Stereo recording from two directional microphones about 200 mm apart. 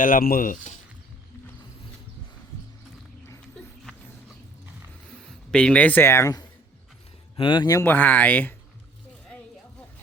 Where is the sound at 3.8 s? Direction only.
Centre (ahead or behind).